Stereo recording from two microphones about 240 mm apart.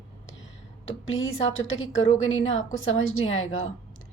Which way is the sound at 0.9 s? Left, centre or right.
Left.